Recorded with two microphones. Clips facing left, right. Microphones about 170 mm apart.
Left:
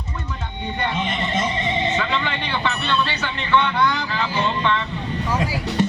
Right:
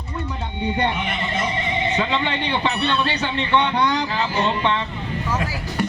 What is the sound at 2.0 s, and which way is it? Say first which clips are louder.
A man's voice: right 2 dB; 20° right (ahead or behind).